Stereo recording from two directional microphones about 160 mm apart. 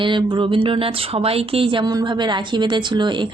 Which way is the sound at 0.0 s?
30° right (ahead or behind).